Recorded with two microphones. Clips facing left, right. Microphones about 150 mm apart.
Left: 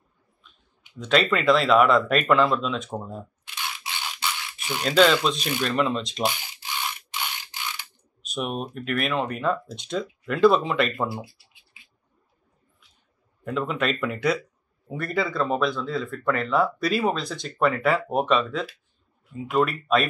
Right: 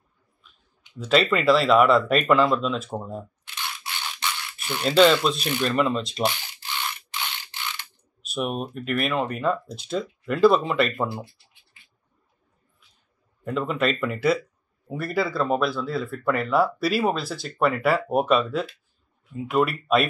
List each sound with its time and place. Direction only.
0.9 s speech: 5° right (ahead or behind)
4.8 s speech: centre (ahead or behind)
6.2 s mechanisms: 10° left (ahead or behind)
8.2 s speech: 5° right (ahead or behind)
11.2 s scratch: 10° left (ahead or behind)
13.4 s speech: centre (ahead or behind)